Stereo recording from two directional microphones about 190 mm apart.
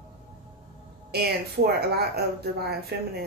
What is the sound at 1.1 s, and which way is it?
Speech, 55° right (ahead or behind).